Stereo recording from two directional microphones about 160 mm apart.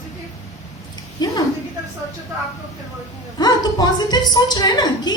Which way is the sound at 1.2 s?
25° left (ahead or behind).